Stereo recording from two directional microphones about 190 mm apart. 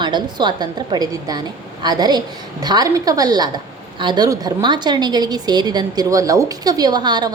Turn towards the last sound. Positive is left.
turn(degrees=-20)  # may be behind; listen again after turning